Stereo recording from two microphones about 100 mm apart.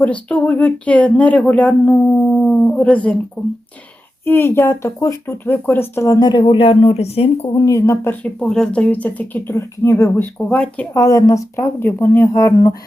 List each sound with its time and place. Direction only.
0.0 s speech: 15° left (ahead or behind)
3.4 s speech: centre (ahead or behind)
4.3 s speech: 20° left (ahead or behind)
6.1 s speech: 45° left (ahead or behind)
6.4 s speech: 70° left (ahead or behind); by 7.3 s 85° left
7.5 s speech: 35° left (ahead or behind)
8.2 s speech: 10° left (ahead or behind); by 10.1 s 25° left (ahead or behind)
10.2 s speech: 15° left (ahead or behind)
10.9 s speech: 30° left (ahead or behind)